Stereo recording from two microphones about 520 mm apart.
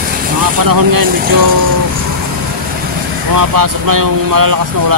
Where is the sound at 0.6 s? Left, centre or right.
Right.